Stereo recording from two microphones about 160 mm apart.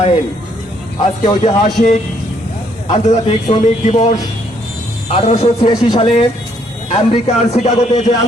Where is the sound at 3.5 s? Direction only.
45° left (ahead or behind).